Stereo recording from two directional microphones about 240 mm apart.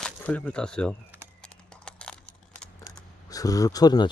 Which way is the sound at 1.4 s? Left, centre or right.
Centre.